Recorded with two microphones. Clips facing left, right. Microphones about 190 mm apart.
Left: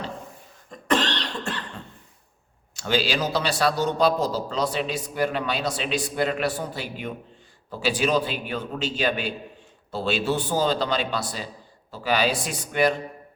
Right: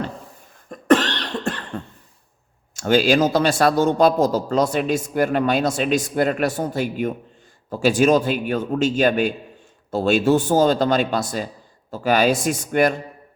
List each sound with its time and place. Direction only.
0.7 s cough: 50° right (ahead or behind)
2.7 s a man's voice: 50° right (ahead or behind)